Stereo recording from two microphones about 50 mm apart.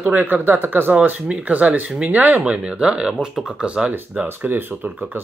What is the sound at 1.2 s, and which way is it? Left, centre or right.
Speech, right.